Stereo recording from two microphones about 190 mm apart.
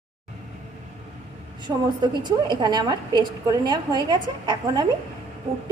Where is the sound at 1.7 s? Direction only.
15° right (ahead or behind).